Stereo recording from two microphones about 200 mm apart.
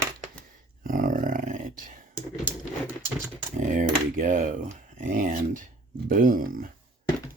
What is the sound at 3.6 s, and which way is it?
Speech, 40° right (ahead or behind).